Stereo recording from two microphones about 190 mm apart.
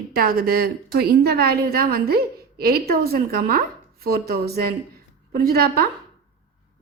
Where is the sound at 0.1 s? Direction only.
50° right (ahead or behind).